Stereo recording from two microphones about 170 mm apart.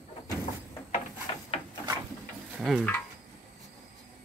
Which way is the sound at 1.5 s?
35° left (ahead or behind).